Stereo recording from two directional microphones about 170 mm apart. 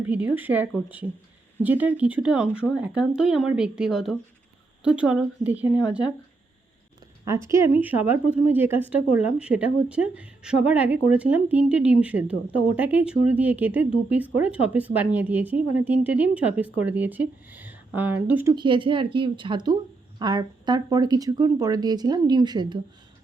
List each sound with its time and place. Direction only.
0.0 s a woman's voice: 10° right (ahead or behind)
7.3 s a woman's voice: 15° right (ahead or behind)
18.5 s a woman's voice: 30° right (ahead or behind)